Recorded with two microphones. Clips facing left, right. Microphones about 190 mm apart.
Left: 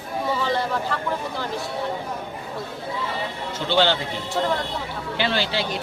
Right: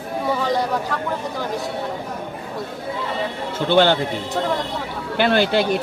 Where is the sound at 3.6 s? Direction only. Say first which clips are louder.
Right 5 dB; 50° right (ahead or behind).